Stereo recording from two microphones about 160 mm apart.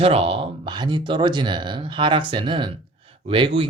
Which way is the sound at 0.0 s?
35° right (ahead or behind).